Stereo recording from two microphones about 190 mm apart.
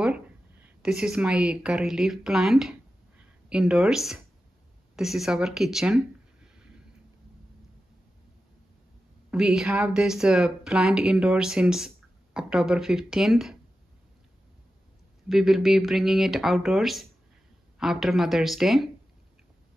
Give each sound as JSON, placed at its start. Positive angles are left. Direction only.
{"t": 0.0, "sound": "speech", "side_deg": -5}
{"t": 9.3, "sound": "speech", "side_deg": -5}
{"t": 15.2, "sound": "speech", "side_deg": 0}